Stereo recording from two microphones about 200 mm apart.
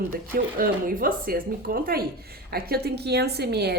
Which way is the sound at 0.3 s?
45° right (ahead or behind).